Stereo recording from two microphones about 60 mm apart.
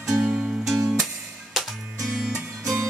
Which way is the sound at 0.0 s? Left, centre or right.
Centre.